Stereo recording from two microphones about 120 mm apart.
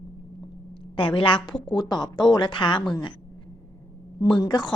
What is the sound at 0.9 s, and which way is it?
A woman's voice, 45° left (ahead or behind).